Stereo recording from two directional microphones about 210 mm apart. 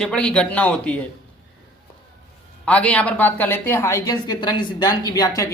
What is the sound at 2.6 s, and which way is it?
A woman's voice, 5° left (ahead or behind).